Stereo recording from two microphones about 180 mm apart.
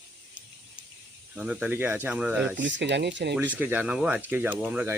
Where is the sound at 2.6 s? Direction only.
80° right.